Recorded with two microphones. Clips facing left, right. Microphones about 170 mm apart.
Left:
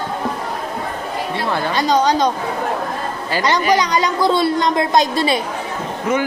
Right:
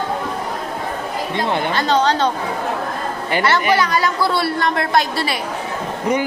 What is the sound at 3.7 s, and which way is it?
A woman's voice, 20° left (ahead or behind).